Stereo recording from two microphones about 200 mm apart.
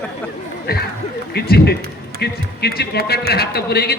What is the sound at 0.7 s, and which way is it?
A man's voice, 50° left (ahead or behind).